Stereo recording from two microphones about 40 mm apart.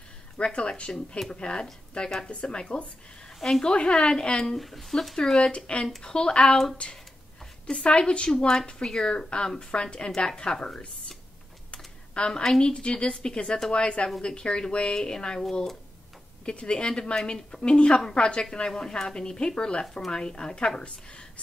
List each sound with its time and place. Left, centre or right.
0.4 s a woman's voice: left
3.3 s a woman's voice: centre
3.6 s a woman's voice: left
4.6 s speech: centre
5.1 s speech: centre
5.7 s a woman's voice: left
6.8 s a woman's voice: left; by 10.8 s centre
11.7 s computer keyboard: left
12.6 s a woman's voice: left
16.4 s a woman's voice: left